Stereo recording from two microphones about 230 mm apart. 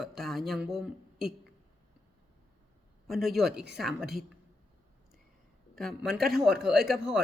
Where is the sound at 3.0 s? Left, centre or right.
Centre.